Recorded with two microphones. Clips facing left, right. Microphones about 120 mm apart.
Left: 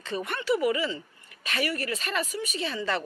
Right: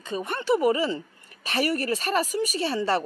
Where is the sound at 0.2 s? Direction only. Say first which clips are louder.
Right 4 dB; 40° right (ahead or behind).